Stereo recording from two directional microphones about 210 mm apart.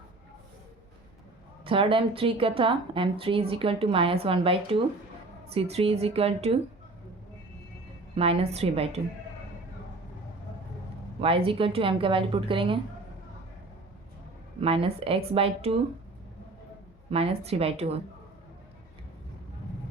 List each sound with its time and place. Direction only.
1.6 s a woman's voice: 25° right (ahead or behind)
8.1 s a woman's voice: 30° right (ahead or behind)
11.2 s a woman's voice: 25° right (ahead or behind)
14.6 s a woman's voice: 25° right (ahead or behind)
17.1 s a woman's voice: 30° right (ahead or behind)